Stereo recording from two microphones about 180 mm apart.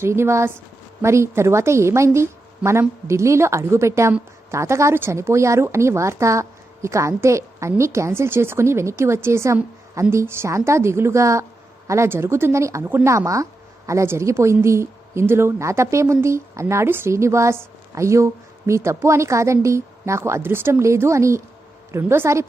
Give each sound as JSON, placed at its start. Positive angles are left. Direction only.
{"t": 0.0, "sound": "a woman's voice", "side_deg": -15}